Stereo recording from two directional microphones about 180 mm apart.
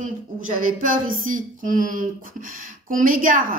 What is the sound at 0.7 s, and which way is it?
Speech, 50° right (ahead or behind).